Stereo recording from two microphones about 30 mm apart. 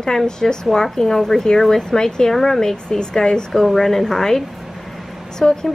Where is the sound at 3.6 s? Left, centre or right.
Centre.